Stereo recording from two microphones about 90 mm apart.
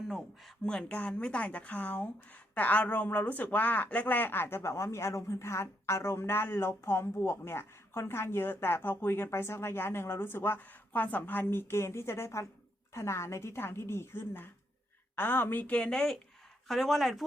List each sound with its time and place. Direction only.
0.6 s a woman's voice: 10° left (ahead or behind)